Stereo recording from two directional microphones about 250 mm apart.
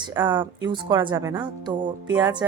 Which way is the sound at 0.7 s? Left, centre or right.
Centre.